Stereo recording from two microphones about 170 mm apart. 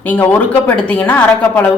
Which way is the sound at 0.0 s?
10° left (ahead or behind).